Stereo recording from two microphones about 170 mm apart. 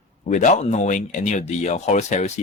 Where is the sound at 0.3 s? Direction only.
45° left (ahead or behind).